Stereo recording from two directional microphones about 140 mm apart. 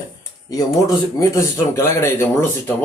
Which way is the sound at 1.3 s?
20° left (ahead or behind).